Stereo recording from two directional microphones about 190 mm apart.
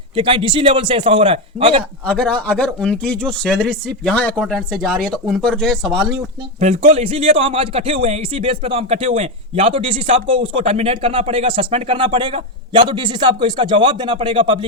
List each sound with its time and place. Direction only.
0.2 s a man's voice: 25° right (ahead or behind)
2.0 s speech: 5° left (ahead or behind)
6.6 s a man's voice: 35° right (ahead or behind)